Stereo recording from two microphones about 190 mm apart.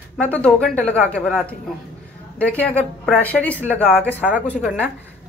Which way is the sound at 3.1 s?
5° left (ahead or behind).